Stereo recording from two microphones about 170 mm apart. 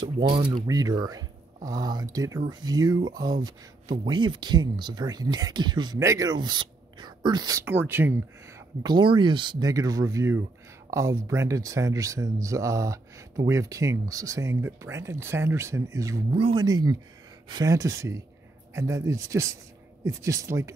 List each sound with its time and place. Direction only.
0.0 s speech: 25° right (ahead or behind)
8.5 s speech: 25° right (ahead or behind)
16.3 s speech: 30° right (ahead or behind)